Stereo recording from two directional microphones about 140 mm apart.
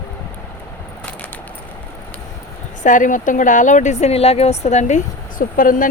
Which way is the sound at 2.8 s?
65° left (ahead or behind).